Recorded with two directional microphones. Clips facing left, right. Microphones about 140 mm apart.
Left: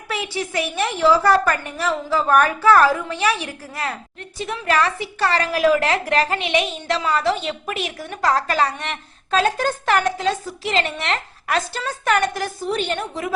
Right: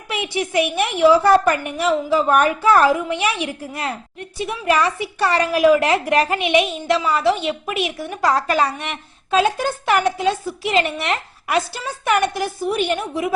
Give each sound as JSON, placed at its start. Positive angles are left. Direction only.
{"t": 0.1, "sound": "a woman's voice", "side_deg": -15}